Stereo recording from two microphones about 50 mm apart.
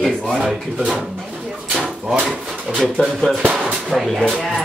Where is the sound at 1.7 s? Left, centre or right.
Centre.